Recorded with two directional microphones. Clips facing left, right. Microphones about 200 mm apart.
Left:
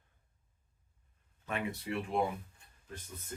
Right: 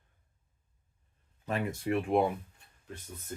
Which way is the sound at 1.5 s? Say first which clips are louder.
Right 5 dB; 40° right (ahead or behind).